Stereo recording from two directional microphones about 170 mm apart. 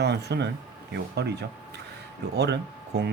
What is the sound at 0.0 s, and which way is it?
Speech, 80° right.